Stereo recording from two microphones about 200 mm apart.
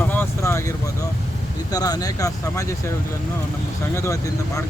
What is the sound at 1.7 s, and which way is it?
Speech, 20° left (ahead or behind).